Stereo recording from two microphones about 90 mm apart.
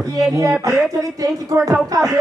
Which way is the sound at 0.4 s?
40° right (ahead or behind).